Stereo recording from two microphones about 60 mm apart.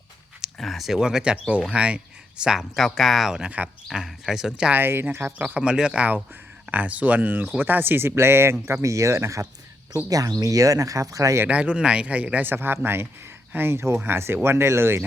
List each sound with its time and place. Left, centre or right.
0.4 s speech: centre
2.7 s speech: centre
4.7 s speech: right
5.5 s speech: centre; by 9.5 s right
10.1 s speech: right
11.4 s speech: centre
12.5 s speech: right